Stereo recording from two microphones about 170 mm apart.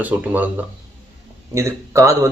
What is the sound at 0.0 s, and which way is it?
Speech, 10° right (ahead or behind).